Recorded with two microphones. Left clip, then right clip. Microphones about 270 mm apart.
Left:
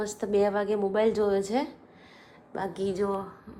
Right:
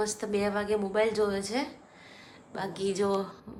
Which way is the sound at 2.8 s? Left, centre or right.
Centre.